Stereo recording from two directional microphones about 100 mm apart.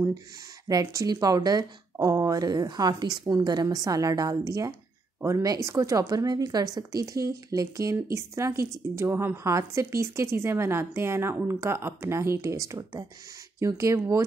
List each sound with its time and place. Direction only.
0.7 s a woman's voice: 40° right (ahead or behind)